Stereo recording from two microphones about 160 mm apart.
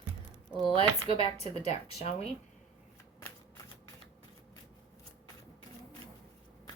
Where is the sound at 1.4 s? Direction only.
40° left (ahead or behind).